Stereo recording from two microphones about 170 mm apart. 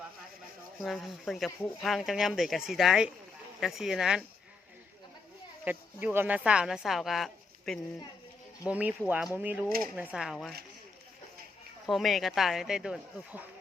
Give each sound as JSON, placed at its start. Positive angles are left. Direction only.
{"t": 0.8, "sound": "speech", "side_deg": 0}
{"t": 5.6, "sound": "speech", "side_deg": -10}
{"t": 11.9, "sound": "speech", "side_deg": 0}